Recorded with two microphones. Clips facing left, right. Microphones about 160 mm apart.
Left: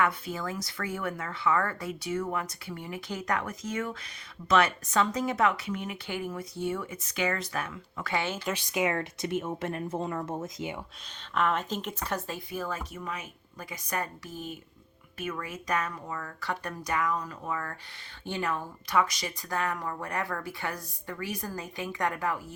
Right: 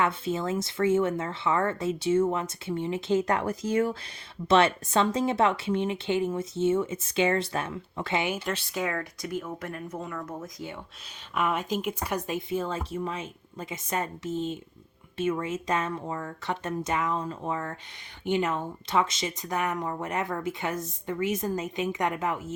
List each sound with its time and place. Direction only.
0.0 s speech: 25° right (ahead or behind)
8.5 s speech: 15° left (ahead or behind)
11.3 s speech: 10° right (ahead or behind)